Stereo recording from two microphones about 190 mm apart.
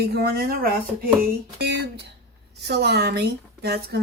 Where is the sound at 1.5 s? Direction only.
60° right (ahead or behind).